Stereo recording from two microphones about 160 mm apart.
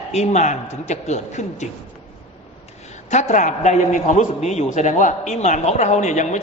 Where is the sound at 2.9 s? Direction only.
45° left (ahead or behind).